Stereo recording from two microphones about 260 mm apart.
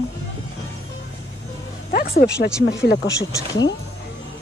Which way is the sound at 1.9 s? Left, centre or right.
Left.